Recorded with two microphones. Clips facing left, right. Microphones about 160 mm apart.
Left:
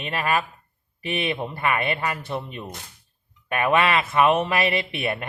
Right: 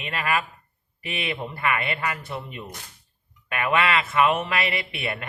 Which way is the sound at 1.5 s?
25° left (ahead or behind).